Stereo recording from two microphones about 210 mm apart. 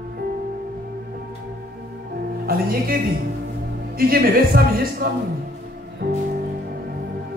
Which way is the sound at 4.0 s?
45° right (ahead or behind).